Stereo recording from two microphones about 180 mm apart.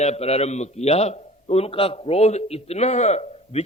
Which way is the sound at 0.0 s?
35° left (ahead or behind).